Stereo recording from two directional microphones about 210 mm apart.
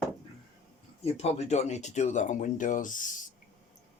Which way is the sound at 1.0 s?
30° left (ahead or behind).